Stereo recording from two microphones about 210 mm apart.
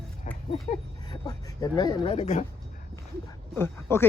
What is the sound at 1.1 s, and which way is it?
Speech, 20° left (ahead or behind).